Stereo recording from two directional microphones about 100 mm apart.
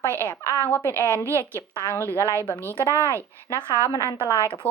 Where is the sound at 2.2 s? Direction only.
25° right (ahead or behind).